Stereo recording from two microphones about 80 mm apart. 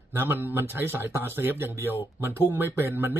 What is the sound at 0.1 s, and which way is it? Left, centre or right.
Speech, right.